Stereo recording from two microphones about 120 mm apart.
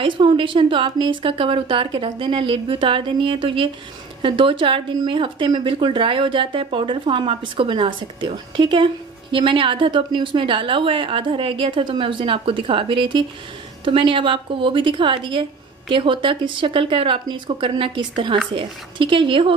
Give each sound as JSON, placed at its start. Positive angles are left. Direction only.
{"t": 0.0, "sound": "speech", "side_deg": -45}